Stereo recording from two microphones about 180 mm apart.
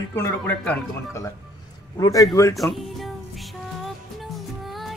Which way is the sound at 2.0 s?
20° left (ahead or behind).